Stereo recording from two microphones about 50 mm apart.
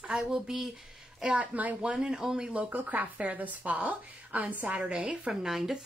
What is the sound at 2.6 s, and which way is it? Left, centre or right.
Speech, right.